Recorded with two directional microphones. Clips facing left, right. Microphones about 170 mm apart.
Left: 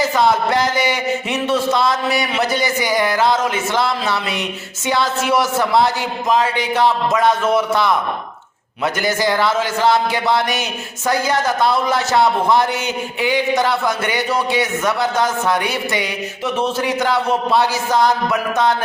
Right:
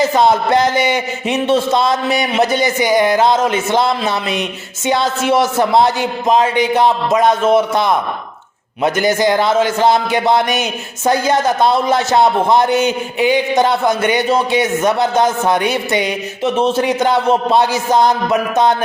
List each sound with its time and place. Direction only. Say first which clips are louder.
0.2 s a man's voice: right 3 dB; 20° right (ahead or behind)